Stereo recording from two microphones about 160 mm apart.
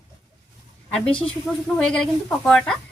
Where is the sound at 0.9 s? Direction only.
5° left (ahead or behind).